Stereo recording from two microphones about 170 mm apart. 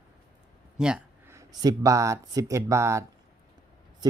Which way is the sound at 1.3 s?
20° right (ahead or behind).